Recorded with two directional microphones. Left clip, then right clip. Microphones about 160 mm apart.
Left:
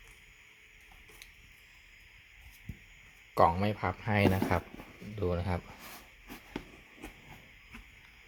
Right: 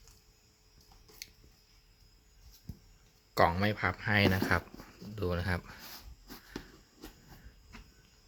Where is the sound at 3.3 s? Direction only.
Centre (ahead or behind).